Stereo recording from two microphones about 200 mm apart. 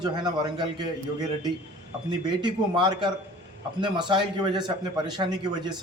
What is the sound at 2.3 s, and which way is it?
A man's voice, 20° right (ahead or behind).